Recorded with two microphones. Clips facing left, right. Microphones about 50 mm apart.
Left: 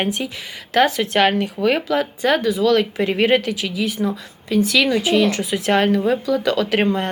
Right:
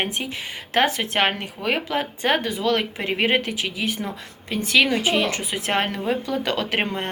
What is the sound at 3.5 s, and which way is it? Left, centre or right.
A woman's voice, right.